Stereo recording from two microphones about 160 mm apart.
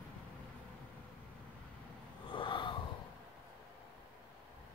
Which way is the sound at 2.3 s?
30° left (ahead or behind).